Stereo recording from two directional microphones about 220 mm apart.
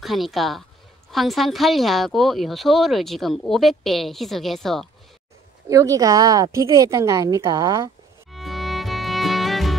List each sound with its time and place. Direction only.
0.0 s speech: centre (ahead or behind)
5.7 s a woman's voice: 15° right (ahead or behind)
8.3 s music: centre (ahead or behind)